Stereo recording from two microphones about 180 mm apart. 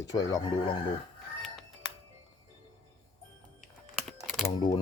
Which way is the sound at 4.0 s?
Centre (ahead or behind).